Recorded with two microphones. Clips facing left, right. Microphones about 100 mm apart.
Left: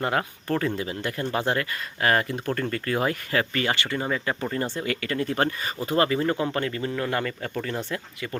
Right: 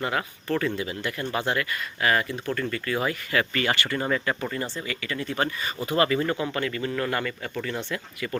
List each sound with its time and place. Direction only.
0.0 s speech: 40° left (ahead or behind)
3.5 s speech: 25° left (ahead or behind)
4.5 s speech: 50° left (ahead or behind)
6.0 s speech: 30° left (ahead or behind)